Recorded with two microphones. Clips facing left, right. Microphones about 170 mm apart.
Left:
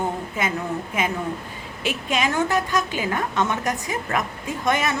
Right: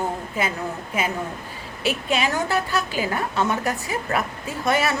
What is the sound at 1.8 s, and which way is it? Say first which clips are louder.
Speech: right 1 dB; 35° right (ahead or behind).